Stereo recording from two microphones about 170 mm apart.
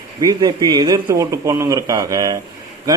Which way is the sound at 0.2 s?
20° right (ahead or behind).